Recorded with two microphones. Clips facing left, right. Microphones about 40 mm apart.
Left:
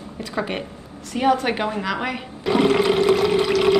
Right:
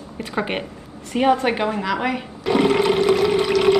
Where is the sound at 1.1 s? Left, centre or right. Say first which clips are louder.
Right 1 dB; centre.